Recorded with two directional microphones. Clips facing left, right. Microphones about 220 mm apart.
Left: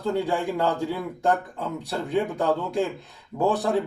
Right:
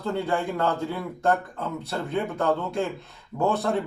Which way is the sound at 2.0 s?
15° left (ahead or behind).